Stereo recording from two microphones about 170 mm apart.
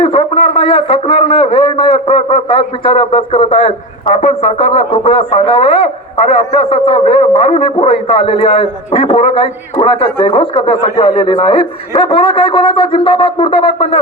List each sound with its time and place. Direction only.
0.0 s a man's voice: 35° left (ahead or behind)